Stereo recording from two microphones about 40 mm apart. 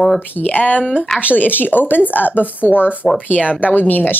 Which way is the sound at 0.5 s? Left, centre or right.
Left.